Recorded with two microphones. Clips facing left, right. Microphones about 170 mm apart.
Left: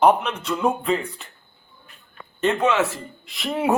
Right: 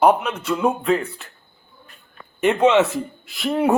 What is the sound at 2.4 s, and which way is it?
Speech, 15° right (ahead or behind).